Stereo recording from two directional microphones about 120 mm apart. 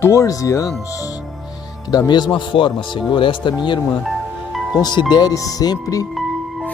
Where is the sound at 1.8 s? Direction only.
35° left (ahead or behind).